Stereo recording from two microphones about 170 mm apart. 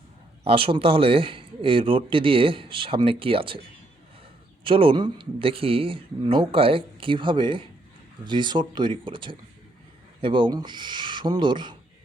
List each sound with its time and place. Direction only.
0.4 s a man's voice: 35° right (ahead or behind)
4.6 s a man's voice: 30° right (ahead or behind)